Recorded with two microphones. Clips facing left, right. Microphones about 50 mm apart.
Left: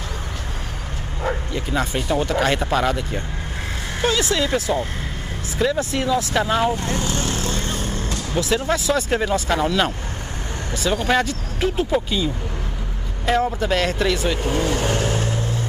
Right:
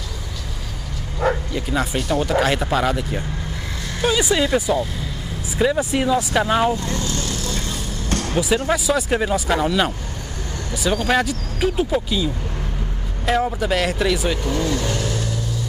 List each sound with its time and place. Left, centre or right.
1.3 s bow-wow: centre
2.0 s speech: left
2.2 s speech: centre
6.7 s vehicle: left
8.1 s vehicle: right
8.6 s speech: centre
14.4 s vehicle: left